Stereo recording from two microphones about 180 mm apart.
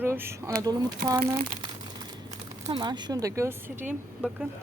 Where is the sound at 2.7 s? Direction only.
25° right (ahead or behind); by 4.5 s 5° right (ahead or behind).